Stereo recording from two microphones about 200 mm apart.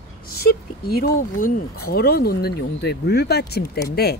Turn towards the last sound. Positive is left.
turn(degrees=50)  # may be behind; listen again after turning